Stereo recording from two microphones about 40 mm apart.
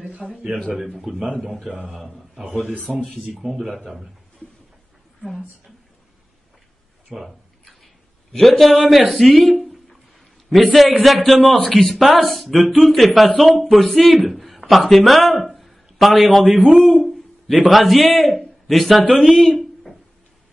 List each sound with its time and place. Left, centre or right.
0.2 s speech: right
0.9 s a man's voice: centre
2.8 s speech: centre
3.3 s speech: centre
7.1 s speech: centre
7.6 s a sound: centre
9.1 s speech: centre
11.2 s speech: centre
15.4 s a sound: centre
16.7 s hoot: centre
17.6 s speech: centre
19.3 s speech: centre